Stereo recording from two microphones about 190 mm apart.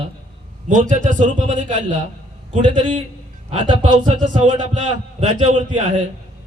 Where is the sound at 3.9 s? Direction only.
40° right (ahead or behind).